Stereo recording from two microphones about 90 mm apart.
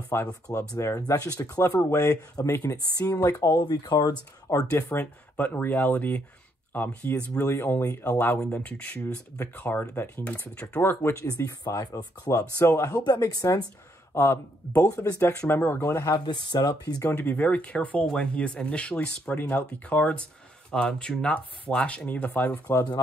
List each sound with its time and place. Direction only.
0.1 s speech: 20° left (ahead or behind)
0.7 s speech: 40° left (ahead or behind)
3.5 s speech: 50° left (ahead or behind)
4.7 s speech: 25° left (ahead or behind)
7.8 s speech: 35° left (ahead or behind)
8.1 s speech: 20° left (ahead or behind)
12.9 s speech: 45° left (ahead or behind)
14.1 s speech: 25° left (ahead or behind)
15.8 s speech: 40° left (ahead or behind)
17.1 s speech: 20° left (ahead or behind)
23.0 s speech: 40° left (ahead or behind)